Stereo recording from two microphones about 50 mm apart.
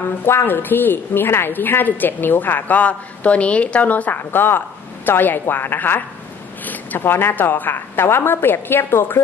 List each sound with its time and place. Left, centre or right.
0.5 s a woman's voice: left